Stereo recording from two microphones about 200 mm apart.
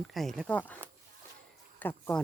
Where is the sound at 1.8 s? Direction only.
10° left (ahead or behind).